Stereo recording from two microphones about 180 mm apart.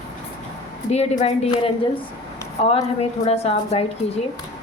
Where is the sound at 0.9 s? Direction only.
35° left (ahead or behind).